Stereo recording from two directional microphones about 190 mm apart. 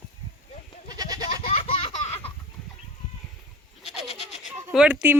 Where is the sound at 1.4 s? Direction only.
30° left (ahead or behind).